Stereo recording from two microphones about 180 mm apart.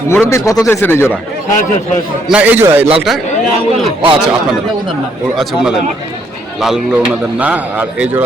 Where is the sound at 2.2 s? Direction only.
5° right (ahead or behind).